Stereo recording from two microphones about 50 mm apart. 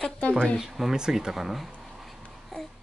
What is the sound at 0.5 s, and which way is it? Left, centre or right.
Speech, centre.